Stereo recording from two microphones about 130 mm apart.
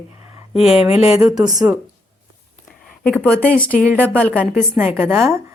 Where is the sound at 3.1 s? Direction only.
15° left (ahead or behind).